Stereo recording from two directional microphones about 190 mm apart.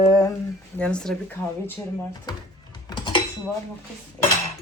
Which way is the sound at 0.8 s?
5° left (ahead or behind).